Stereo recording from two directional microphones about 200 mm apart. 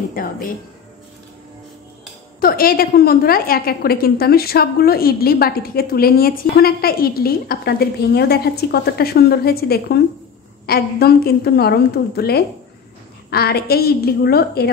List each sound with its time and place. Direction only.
0.1 s music: 45° left (ahead or behind)
2.4 s a woman's voice: 45° left (ahead or behind)